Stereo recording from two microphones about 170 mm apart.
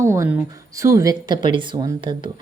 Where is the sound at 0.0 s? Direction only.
15° right (ahead or behind).